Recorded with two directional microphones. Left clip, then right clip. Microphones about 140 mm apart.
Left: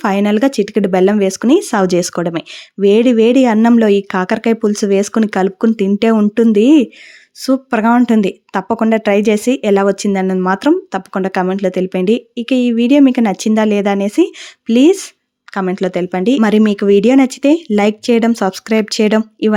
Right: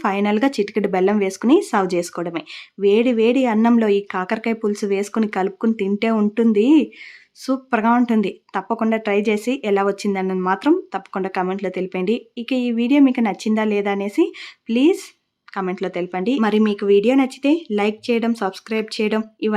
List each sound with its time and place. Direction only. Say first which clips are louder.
0.0 s speech: left 5 dB; 40° left (ahead or behind)